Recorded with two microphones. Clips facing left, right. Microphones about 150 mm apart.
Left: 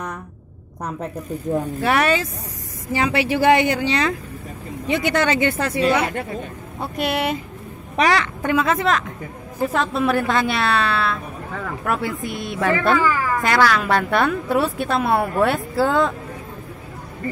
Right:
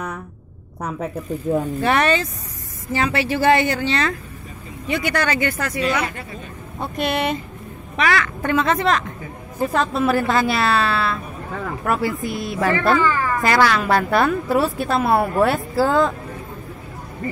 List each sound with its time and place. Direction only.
1.5 s a woman's voice: 5° left (ahead or behind); by 6.0 s 30° left (ahead or behind)
6.0 s speech: 60° left (ahead or behind)
6.8 s a woman's voice: 5° left (ahead or behind)
7.9 s a woman's voice: 35° left (ahead or behind)
8.4 s speech: 10° left (ahead or behind)